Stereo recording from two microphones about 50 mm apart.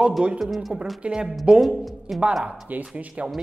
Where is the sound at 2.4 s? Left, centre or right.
Right.